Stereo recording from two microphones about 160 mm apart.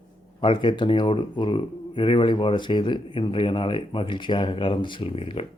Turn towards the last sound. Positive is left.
turn(degrees=35)  # may be behind; listen again after turning